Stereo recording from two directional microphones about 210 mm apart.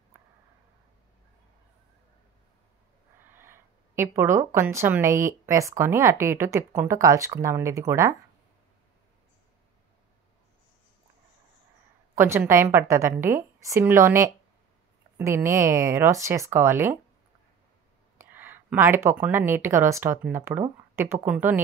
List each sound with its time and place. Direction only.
3.3 s speech: 10° right (ahead or behind)
12.2 s speech: 10° right (ahead or behind)
18.1 s speech: 10° right (ahead or behind)